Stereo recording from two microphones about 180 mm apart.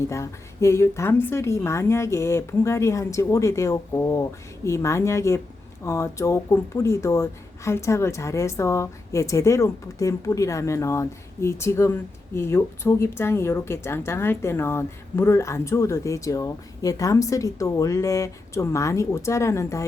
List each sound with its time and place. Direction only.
0.1 s speech: 15° left (ahead or behind)